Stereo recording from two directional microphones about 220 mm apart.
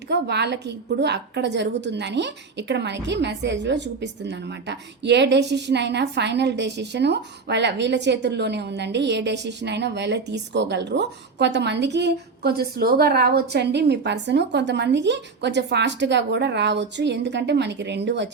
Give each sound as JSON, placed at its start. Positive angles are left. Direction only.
{"t": 0.1, "sound": "a woman's voice", "side_deg": -50}